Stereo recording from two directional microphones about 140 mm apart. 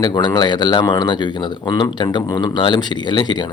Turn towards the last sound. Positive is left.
turn(degrees=30)  # may be behind; listen again after turning